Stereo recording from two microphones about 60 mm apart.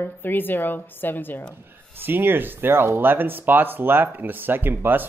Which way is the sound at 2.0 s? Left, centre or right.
Right.